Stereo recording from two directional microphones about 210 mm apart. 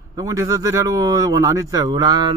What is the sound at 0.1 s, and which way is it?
Speech, 15° right (ahead or behind).